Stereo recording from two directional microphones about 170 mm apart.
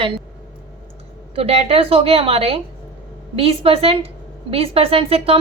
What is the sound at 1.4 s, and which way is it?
A woman's voice, 35° right (ahead or behind).